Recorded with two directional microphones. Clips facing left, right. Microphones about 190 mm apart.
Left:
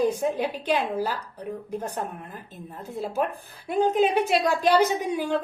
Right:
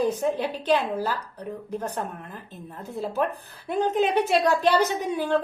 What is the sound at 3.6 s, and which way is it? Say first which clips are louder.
A woman's voice: left 2 dB; 10° left (ahead or behind).